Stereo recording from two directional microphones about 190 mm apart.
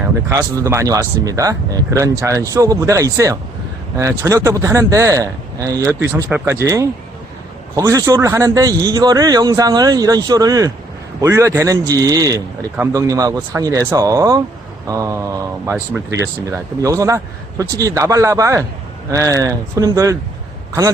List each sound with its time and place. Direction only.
0.0 s a man's voice: 15° right (ahead or behind)